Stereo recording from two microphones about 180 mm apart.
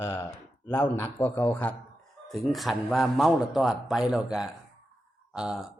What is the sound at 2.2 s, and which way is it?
A man's voice, centre (ahead or behind).